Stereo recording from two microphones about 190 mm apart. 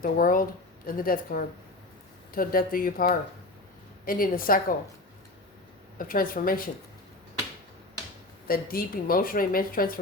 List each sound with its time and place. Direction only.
0.0 s a woman's voice: 45° left (ahead or behind)
6.0 s a woman's voice: 45° left (ahead or behind)
8.4 s a woman's voice: 50° left (ahead or behind)